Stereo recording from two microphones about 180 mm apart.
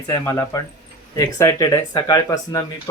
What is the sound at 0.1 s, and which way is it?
Speech, 15° left (ahead or behind).